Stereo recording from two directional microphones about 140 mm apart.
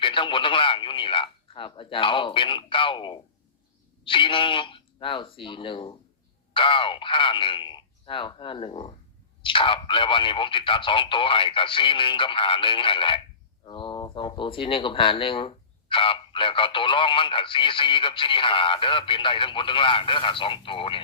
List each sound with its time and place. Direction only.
0.0 s speech: 35° left (ahead or behind)